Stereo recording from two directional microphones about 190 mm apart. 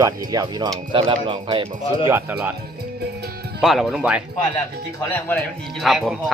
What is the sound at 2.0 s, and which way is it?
Speech, 10° right (ahead or behind).